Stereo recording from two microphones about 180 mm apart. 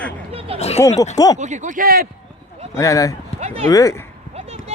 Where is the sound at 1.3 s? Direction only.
40° right (ahead or behind).